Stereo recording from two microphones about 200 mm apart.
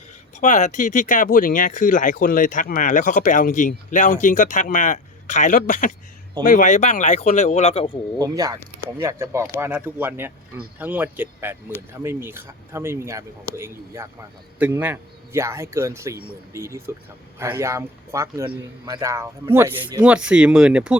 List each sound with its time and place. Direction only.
0.3 s speech: 35° left (ahead or behind)
8.2 s speech: 20° right (ahead or behind)